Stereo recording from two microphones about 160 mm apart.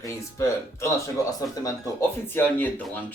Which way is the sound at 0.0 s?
20° left (ahead or behind).